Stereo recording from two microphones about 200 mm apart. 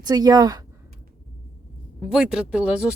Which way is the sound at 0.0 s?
20° right (ahead or behind).